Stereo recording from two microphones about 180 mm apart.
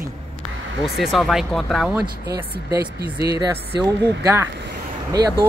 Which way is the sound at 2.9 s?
60° right (ahead or behind).